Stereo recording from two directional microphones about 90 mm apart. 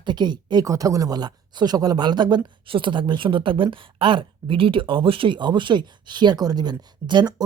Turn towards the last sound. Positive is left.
turn(degrees=-55)  # may be behind; listen again after turning